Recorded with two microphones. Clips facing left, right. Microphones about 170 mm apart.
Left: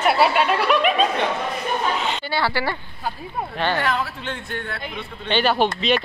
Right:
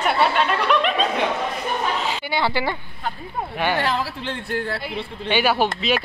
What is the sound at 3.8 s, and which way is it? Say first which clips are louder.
A woman's voice: even; 30° right (ahead or behind).